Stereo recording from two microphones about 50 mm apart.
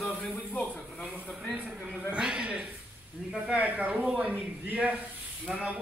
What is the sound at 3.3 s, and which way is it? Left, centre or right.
Speech, right.